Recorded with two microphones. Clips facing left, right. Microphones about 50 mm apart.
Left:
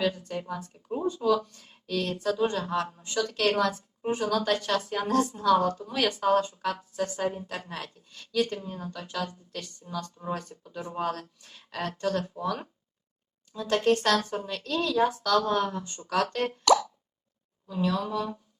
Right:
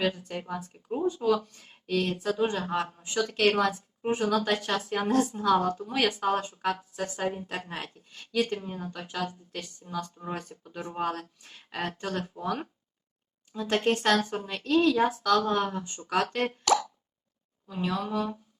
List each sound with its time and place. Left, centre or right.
0.0 s speech: right
6.4 s speech: right; by 12.6 s centre
13.5 s speech: right
17.7 s speech: centre